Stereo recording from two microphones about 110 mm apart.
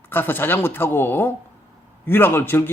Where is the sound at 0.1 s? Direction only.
20° left (ahead or behind).